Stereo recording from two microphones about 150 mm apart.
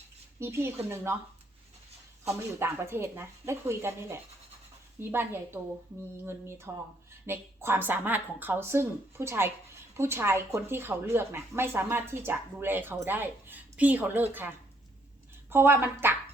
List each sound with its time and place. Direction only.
0.3 s speech: 15° right (ahead or behind)
2.2 s speech: 20° right (ahead or behind)